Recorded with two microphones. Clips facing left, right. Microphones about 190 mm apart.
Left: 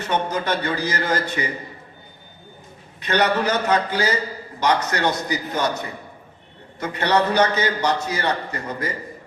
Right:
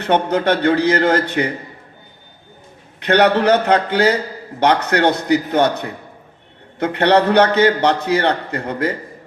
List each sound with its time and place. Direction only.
0.0 s a man's voice: 60° right (ahead or behind)
3.0 s a man's voice: 60° right (ahead or behind)